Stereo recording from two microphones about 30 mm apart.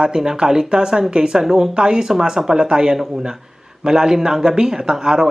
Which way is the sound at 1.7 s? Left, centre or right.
Right.